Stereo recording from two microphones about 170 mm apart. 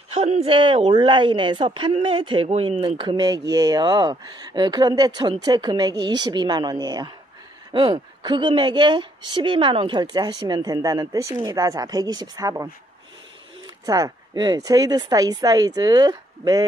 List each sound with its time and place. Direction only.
0.1 s a woman's voice: 40° right (ahead or behind); by 12.6 s 20° right (ahead or behind)
13.8 s a woman's voice: 20° right (ahead or behind)